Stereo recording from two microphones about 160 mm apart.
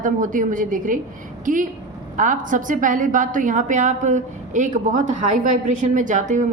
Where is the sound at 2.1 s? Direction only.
55° right (ahead or behind).